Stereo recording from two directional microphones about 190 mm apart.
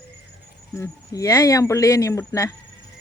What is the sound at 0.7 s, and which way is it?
Speech, 15° left (ahead or behind).